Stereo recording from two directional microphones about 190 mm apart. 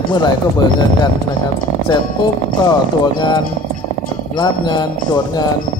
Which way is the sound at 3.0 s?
20° left (ahead or behind).